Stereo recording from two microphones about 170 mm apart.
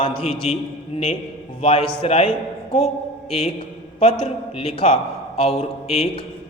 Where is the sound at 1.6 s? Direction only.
35° left (ahead or behind).